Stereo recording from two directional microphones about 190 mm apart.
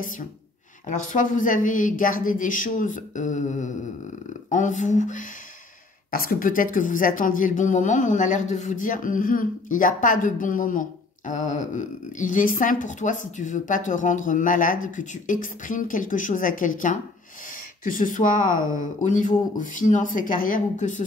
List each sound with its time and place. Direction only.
0.8 s speech: 40° left (ahead or behind)